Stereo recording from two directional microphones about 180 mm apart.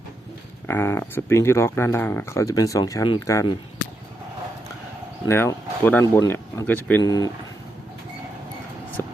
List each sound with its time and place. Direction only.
0.7 s speech: 15° left (ahead or behind)
5.2 s speech: 15° left (ahead or behind)
7.0 s speech: 20° left (ahead or behind)